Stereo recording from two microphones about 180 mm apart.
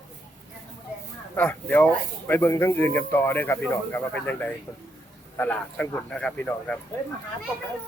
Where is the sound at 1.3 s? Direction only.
10° left (ahead or behind).